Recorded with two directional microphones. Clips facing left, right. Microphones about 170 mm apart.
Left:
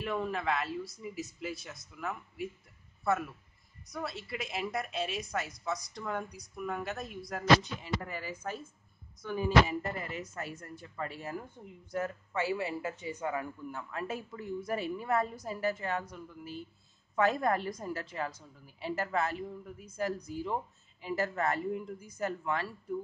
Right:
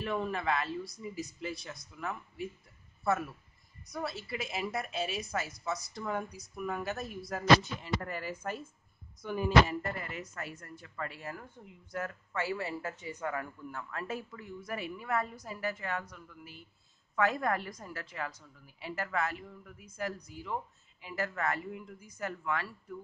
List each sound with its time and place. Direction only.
0.0 s a woman's voice: centre (ahead or behind)
9.2 s a sound: 5° right (ahead or behind)
9.9 s speech: 25° left (ahead or behind)